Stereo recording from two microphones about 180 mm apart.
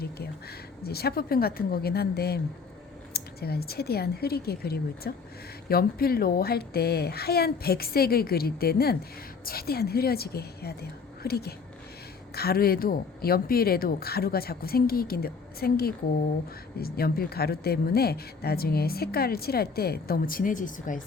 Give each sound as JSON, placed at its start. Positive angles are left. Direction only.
{"t": 0.8, "sound": "speech", "side_deg": 60}